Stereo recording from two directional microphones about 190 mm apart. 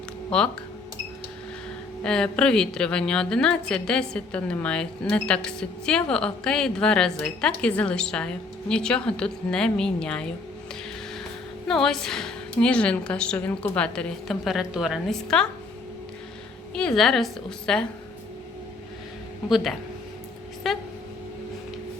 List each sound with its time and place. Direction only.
0.3 s speech: 5° left (ahead or behind)
2.0 s a woman's voice: 5° left (ahead or behind)
11.7 s a woman's voice: centre (ahead or behind)
16.7 s a woman's voice: 5° left (ahead or behind)
19.5 s a woman's voice: centre (ahead or behind)